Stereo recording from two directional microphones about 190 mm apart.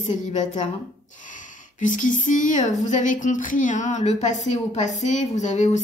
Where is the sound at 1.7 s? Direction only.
40° left (ahead or behind).